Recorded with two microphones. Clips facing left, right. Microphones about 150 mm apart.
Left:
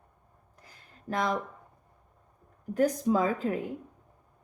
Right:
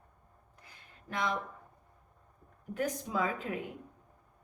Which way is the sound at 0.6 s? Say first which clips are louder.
Left 8 dB; 40° left (ahead or behind).